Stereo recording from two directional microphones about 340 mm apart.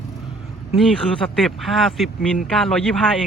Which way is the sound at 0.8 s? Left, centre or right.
Centre.